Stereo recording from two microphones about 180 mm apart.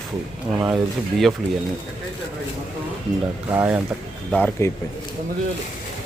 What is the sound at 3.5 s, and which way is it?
Speech, 10° right (ahead or behind).